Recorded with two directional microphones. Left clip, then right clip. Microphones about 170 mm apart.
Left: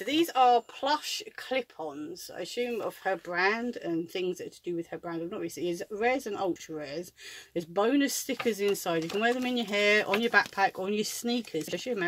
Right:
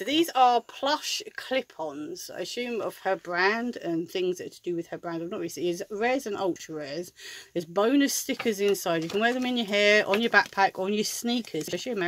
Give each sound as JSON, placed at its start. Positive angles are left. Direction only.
{"t": 0.0, "sound": "speech", "side_deg": -50}